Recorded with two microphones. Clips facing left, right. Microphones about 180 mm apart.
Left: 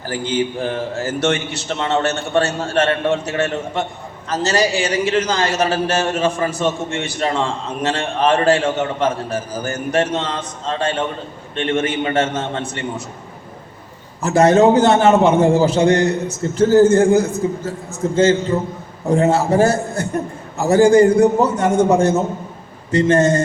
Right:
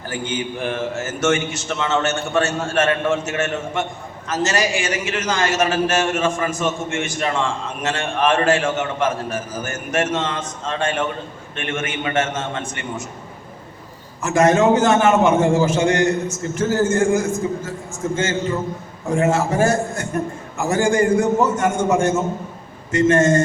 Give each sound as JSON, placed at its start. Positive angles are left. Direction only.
{"t": 0.1, "sound": "a man's voice", "side_deg": 30}
{"t": 14.2, "sound": "a man's voice", "side_deg": 35}